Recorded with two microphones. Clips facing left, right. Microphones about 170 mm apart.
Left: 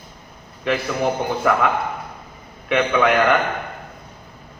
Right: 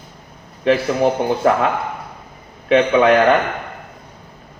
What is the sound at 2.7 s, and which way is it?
Speech, 30° right (ahead or behind).